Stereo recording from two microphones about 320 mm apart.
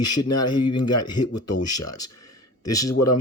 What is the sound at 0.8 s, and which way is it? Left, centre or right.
Speech, centre.